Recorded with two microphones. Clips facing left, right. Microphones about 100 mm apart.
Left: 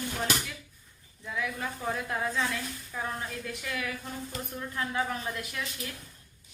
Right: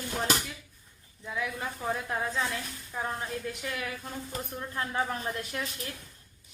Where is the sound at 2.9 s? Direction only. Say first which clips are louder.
Right 1 dB; 15° right (ahead or behind).